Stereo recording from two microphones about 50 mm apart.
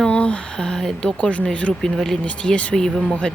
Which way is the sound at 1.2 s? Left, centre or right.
Left.